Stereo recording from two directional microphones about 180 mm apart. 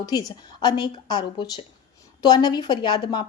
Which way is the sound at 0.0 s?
20° left (ahead or behind).